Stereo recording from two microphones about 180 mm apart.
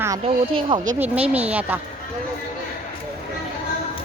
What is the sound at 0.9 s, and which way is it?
Speech, 10° right (ahead or behind).